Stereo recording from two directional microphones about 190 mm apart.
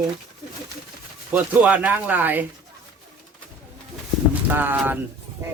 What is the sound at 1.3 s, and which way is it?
Speech, 10° right (ahead or behind).